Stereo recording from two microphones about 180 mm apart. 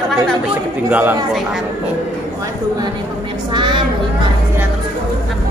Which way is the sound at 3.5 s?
25° right (ahead or behind).